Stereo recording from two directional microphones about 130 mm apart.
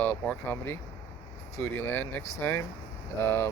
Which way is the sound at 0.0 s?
15° left (ahead or behind).